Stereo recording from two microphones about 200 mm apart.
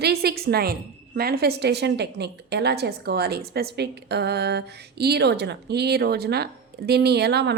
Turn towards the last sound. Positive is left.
turn(degrees=-55)  # may be behind; listen again after turning